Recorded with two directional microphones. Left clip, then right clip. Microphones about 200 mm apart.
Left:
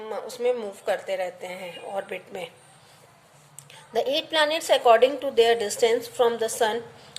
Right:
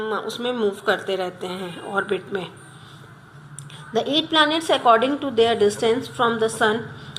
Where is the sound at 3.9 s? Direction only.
25° left (ahead or behind).